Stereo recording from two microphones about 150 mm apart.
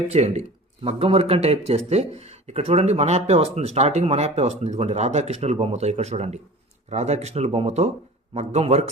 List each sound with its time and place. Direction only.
0.1 s speech: 45° right (ahead or behind)